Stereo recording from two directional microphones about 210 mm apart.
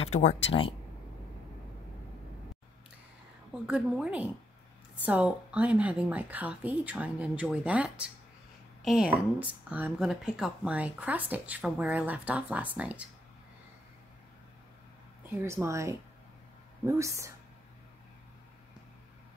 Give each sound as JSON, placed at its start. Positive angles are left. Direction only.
{"t": 0.0, "sound": "speech", "side_deg": 30}
{"t": 3.6, "sound": "a woman's voice", "side_deg": -5}
{"t": 15.2, "sound": "speech", "side_deg": -10}